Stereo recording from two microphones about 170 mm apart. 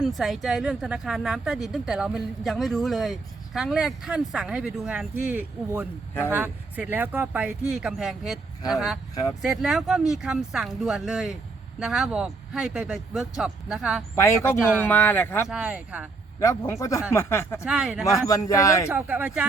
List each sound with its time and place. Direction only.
0.0 s speech: centre (ahead or behind)
14.2 s speech: 15° left (ahead or behind)
15.4 s speech: 5° right (ahead or behind)
16.4 s speech: 15° left (ahead or behind)
17.7 s speech: 5° right (ahead or behind)
18.0 s speech: 20° left (ahead or behind)
18.9 s speech: 10° right (ahead or behind)